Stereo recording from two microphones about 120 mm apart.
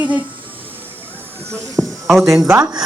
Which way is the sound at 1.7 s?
Centre (ahead or behind).